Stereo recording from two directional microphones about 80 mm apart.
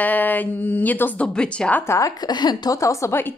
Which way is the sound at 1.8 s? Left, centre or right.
Left.